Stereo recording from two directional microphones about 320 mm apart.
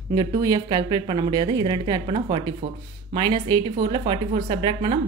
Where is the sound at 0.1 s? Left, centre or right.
Centre.